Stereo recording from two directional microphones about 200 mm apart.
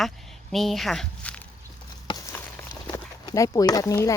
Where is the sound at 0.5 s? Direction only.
Centre (ahead or behind).